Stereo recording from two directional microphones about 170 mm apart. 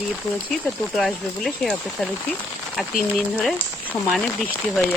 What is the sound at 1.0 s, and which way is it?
Speech, centre (ahead or behind).